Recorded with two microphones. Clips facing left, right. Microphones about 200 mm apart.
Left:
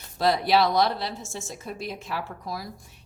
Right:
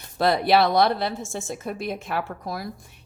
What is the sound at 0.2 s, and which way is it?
A woman's voice, 60° right (ahead or behind).